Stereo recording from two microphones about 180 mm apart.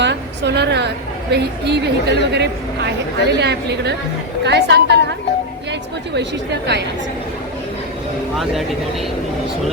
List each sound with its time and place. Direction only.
0.0 s a woman's voice: 75° right (ahead or behind)
6.1 s a woman's voice: 75° right (ahead or behind)